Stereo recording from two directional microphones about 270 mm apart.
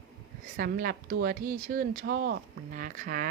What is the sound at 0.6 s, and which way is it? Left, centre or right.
Speech, right.